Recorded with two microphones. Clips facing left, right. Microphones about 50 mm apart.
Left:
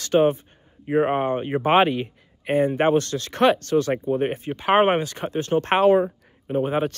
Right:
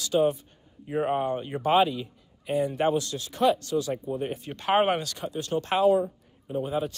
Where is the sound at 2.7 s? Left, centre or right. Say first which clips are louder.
Left 5 dB; left.